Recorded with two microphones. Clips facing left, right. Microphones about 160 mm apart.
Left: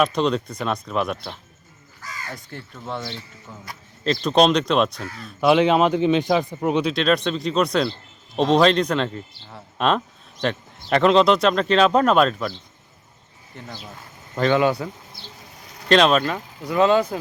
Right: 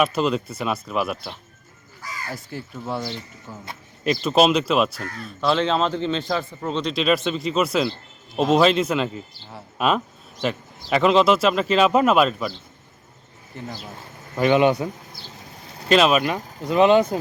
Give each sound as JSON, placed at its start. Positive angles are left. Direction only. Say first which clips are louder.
{"t": 0.0, "sound": "speech", "louder": "left 1 dB", "side_deg": -5}
{"t": 5.4, "sound": "speech", "louder": "left 4 dB", "side_deg": 15}
{"t": 6.9, "sound": "speech", "louder": "left 1 dB", "side_deg": -5}
{"t": 13.5, "sound": "speech", "louder": "right 5 dB", "side_deg": 0}
{"t": 14.3, "sound": "speech", "louder": "right 2 dB", "side_deg": -15}
{"t": 15.9, "sound": "speech", "louder": "left 1 dB", "side_deg": -5}
{"t": 16.2, "sound": "speech", "louder": "right 2 dB", "side_deg": -20}